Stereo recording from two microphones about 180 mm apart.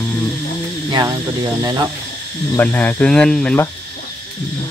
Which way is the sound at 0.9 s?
20° right (ahead or behind).